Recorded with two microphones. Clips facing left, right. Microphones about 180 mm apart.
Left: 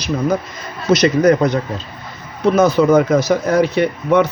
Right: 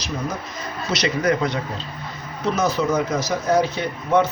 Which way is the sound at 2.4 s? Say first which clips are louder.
Left 9 dB; 55° left (ahead or behind).